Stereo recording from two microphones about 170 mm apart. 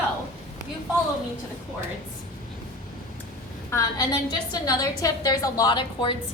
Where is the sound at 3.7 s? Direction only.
25° left (ahead or behind).